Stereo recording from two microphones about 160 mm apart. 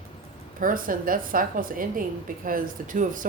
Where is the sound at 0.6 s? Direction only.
60° right (ahead or behind).